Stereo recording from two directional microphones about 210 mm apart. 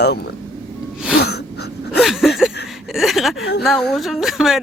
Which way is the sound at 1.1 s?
50° left (ahead or behind).